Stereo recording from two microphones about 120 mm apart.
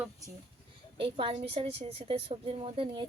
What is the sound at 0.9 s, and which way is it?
A woman's voice, 50° right (ahead or behind).